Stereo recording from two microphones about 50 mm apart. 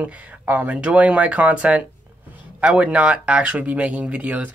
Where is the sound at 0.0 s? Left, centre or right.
Right.